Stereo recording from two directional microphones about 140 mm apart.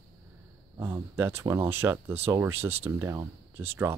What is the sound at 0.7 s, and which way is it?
Speech, 15° right (ahead or behind).